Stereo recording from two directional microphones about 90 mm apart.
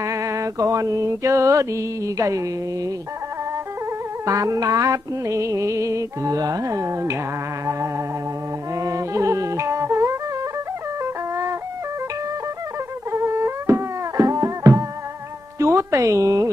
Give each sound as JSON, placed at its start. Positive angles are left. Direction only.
{"t": 0.0, "sound": "mantra", "side_deg": -35}
{"t": 4.3, "sound": "mantra", "side_deg": -35}
{"t": 8.7, "sound": "music", "side_deg": -35}
{"t": 13.1, "sound": "music", "side_deg": -30}
{"t": 15.6, "sound": "speech", "side_deg": -35}